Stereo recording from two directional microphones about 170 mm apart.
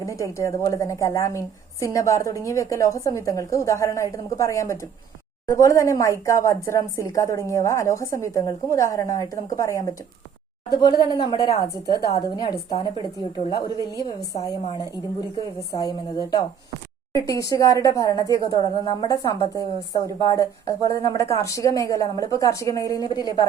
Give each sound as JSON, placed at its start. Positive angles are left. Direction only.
{"t": 0.0, "sound": "a woman's voice", "side_deg": 20}